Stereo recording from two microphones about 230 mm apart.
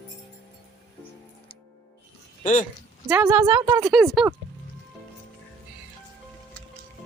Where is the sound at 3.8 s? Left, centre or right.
Centre.